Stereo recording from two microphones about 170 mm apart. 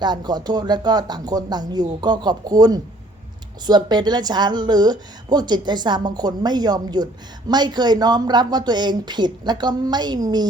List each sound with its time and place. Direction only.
0.0 s a woman's voice: 25° right (ahead or behind)